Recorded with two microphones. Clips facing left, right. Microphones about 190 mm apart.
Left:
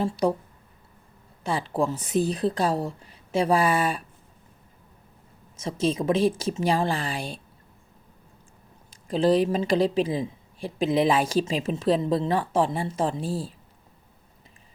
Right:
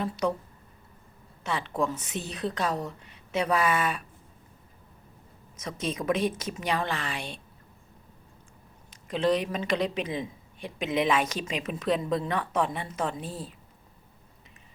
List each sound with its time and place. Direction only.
0.0 s speech: 35° left (ahead or behind)
1.5 s speech: 35° left (ahead or behind)
5.5 s speech: 30° left (ahead or behind)
8.9 s speech: 35° left (ahead or behind)